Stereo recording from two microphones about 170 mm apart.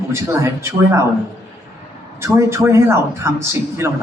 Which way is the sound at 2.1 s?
15° right (ahead or behind).